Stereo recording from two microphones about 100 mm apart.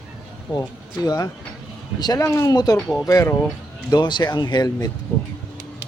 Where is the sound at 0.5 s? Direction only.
45° left (ahead or behind).